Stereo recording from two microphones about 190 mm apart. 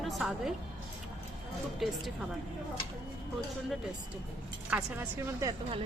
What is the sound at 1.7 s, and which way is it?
Speech, centre (ahead or behind).